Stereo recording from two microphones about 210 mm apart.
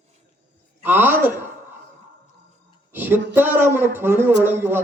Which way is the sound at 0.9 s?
10° right (ahead or behind).